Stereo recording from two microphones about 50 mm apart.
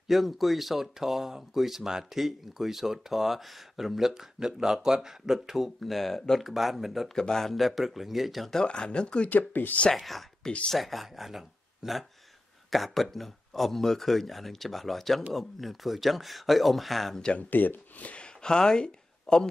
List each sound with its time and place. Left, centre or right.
0.1 s speech: centre
6.4 s speech: centre
7.2 s speech: centre
8.5 s speech: centre
9.3 s speech: left
9.9 s speech: centre
17.4 s speech: left
18.1 s a sound: centre